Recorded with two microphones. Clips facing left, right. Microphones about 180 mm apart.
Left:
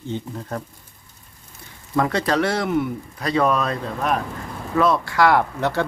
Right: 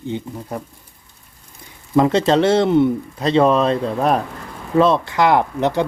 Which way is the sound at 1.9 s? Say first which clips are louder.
Right 6 dB; 20° right (ahead or behind).